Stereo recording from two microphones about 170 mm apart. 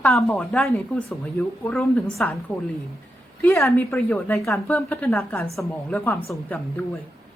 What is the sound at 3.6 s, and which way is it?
A woman's voice, centre (ahead or behind).